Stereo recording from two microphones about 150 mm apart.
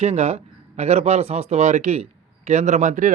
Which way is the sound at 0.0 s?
45° right (ahead or behind).